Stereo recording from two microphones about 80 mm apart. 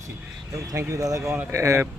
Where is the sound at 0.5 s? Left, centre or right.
Right.